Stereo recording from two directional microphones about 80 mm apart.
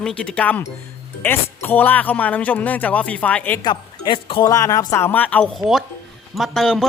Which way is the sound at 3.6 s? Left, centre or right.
Left.